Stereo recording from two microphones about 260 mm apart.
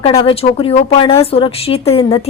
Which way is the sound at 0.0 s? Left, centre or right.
Left.